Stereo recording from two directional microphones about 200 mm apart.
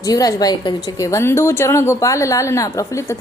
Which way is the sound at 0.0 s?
20° left (ahead or behind).